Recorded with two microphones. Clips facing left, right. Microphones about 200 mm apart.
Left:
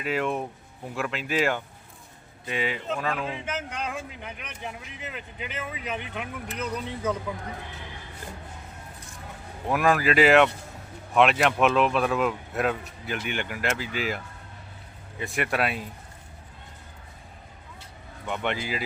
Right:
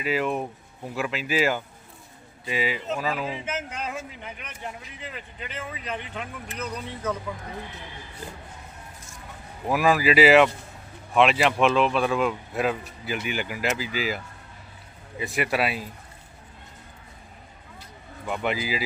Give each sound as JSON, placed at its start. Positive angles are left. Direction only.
{"t": 0.0, "sound": "a man's voice", "side_deg": 0}
{"t": 9.6, "sound": "a man's voice", "side_deg": -5}
{"t": 15.2, "sound": "a man's voice", "side_deg": 0}
{"t": 18.3, "sound": "a man's voice", "side_deg": -5}